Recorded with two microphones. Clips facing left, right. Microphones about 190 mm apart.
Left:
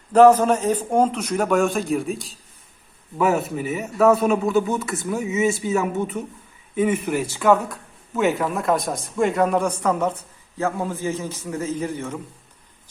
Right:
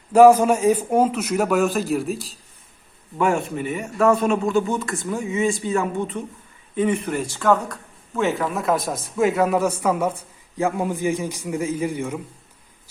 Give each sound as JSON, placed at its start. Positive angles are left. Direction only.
{"t": 0.1, "sound": "speech", "side_deg": -10}